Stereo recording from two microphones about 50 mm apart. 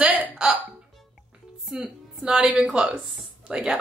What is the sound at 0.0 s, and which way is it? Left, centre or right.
Hiccup, right.